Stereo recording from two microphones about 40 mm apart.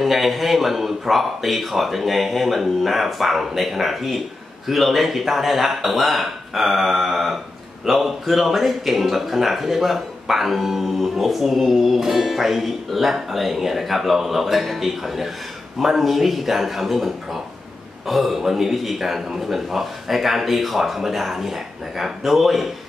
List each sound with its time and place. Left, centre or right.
0.0 s speech: centre